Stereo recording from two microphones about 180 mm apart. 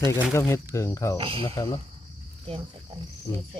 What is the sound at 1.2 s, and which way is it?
Speech, 30° right (ahead or behind).